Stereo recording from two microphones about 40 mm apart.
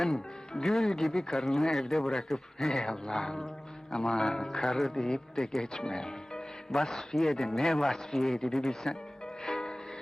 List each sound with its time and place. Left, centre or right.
0.0 s a man's voice: centre
4.3 s a man's voice: centre
4.5 s a man's voice: centre
9.4 s music: centre